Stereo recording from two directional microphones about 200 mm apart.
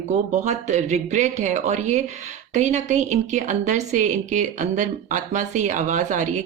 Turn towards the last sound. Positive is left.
turn(degrees=-40)  # may be behind; listen again after turning